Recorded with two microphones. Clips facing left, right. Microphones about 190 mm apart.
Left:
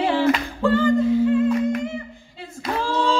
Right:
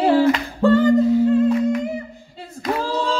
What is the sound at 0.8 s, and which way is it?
Humming, 40° right (ahead or behind).